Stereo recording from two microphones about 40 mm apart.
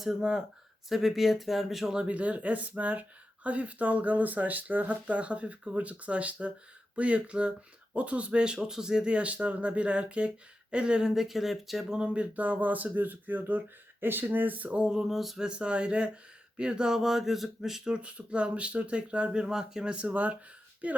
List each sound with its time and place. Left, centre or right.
0.9 s speech: centre
2.0 s speech: right; by 9.0 s centre
9.0 s speech: right
11.1 s speech: centre
11.9 s speech: right
14.0 s speech: right
14.7 s speech: right
14.9 s speech: centre
15.4 s speech: right; by 17.8 s centre
17.8 s speech: right
19.4 s speech: centre
19.9 s speech: right